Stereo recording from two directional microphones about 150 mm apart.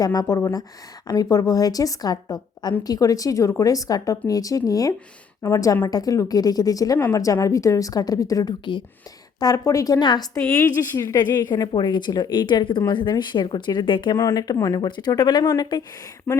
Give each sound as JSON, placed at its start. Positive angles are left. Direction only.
{"t": 0.0, "sound": "speech", "side_deg": 25}